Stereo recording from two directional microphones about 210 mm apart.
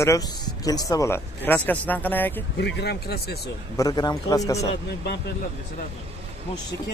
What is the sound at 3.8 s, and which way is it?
Speech, 20° left (ahead or behind).